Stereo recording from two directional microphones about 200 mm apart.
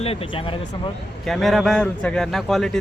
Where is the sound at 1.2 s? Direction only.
Centre (ahead or behind).